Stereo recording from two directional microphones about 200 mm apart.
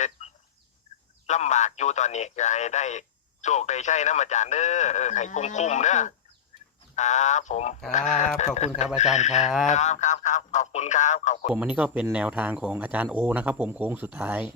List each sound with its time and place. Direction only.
0.2 s fowl: 30° left (ahead or behind)
1.3 s speech: 35° left (ahead or behind)
11.5 s speech: 5° right (ahead or behind)